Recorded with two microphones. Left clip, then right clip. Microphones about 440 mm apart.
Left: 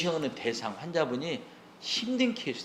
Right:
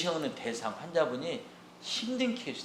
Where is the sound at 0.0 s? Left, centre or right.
Left.